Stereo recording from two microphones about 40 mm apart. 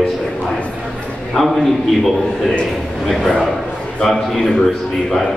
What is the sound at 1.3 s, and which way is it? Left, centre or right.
A man's voice, centre.